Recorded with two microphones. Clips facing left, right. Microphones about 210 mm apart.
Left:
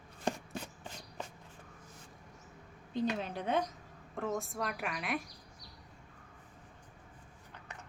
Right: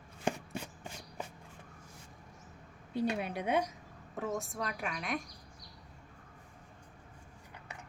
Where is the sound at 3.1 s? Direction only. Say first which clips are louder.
Right 1 dB; 10° right (ahead or behind).